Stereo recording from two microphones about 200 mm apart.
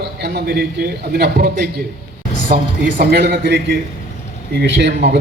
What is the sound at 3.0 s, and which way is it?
A man's voice, 55° right (ahead or behind).